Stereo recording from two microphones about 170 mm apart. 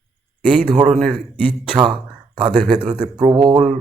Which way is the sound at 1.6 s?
25° right (ahead or behind).